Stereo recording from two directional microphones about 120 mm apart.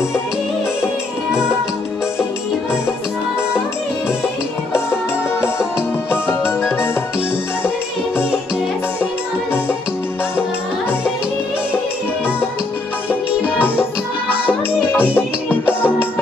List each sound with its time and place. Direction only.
14.4 s music: 15° left (ahead or behind)